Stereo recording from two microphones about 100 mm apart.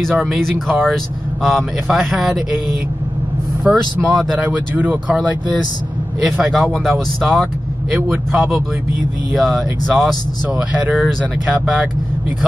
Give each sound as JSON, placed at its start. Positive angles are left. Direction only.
{"t": 0.1, "sound": "speech", "side_deg": -5}
{"t": 3.6, "sound": "speech", "side_deg": -10}
{"t": 6.2, "sound": "speech", "side_deg": 0}
{"t": 10.9, "sound": "speech", "side_deg": -15}